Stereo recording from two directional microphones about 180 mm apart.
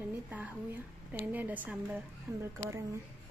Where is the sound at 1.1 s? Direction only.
10° right (ahead or behind).